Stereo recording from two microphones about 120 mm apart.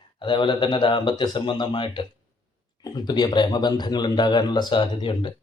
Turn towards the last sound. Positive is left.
turn(degrees=40)  # may be behind; listen again after turning